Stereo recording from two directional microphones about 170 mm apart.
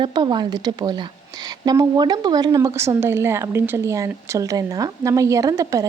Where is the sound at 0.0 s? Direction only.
25° right (ahead or behind).